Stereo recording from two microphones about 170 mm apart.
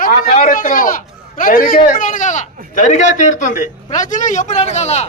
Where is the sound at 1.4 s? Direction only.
55° left (ahead or behind).